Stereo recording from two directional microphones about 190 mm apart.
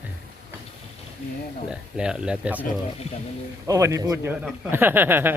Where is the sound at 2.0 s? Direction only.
5° right (ahead or behind).